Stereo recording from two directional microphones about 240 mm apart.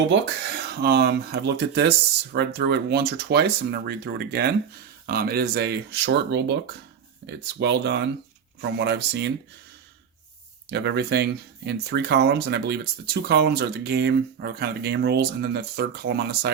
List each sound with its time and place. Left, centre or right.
0.1 s speech: right
10.7 s speech: right